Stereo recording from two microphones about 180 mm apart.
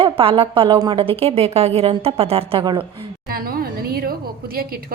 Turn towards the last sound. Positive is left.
turn(degrees=-55)  # may be behind; listen again after turning